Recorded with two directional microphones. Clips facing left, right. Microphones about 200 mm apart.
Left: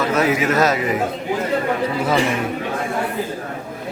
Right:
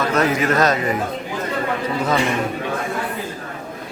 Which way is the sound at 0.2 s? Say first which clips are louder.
Even; 5° left (ahead or behind).